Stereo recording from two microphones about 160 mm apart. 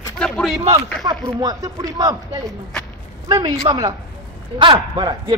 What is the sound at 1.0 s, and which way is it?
Speech, 25° right (ahead or behind).